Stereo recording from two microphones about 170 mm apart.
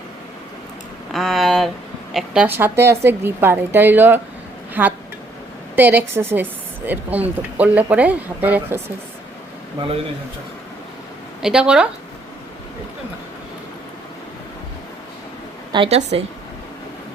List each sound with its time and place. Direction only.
1.1 s a woman's voice: centre (ahead or behind)
11.4 s speech: 5° right (ahead or behind)
15.7 s a woman's voice: 30° right (ahead or behind)